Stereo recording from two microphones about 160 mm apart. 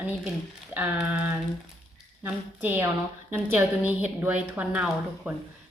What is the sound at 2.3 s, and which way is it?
Speech, 10° right (ahead or behind).